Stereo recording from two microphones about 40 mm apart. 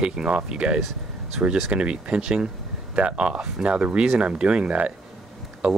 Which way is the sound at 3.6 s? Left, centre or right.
Right.